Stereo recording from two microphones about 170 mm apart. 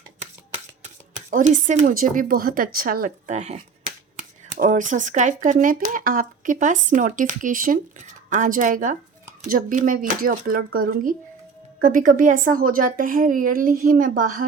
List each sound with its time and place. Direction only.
0.8 s a woman's voice: 50° right (ahead or behind)